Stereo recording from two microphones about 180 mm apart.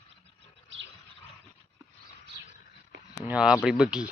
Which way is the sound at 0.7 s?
90° right.